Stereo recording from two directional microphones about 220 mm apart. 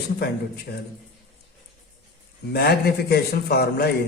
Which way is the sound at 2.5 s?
45° left (ahead or behind).